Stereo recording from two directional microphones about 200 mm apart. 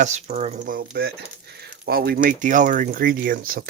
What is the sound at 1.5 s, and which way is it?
Speech, 50° right (ahead or behind).